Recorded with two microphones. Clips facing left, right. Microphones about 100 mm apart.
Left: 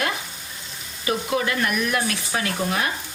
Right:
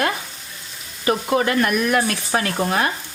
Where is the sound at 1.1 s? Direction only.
45° right (ahead or behind).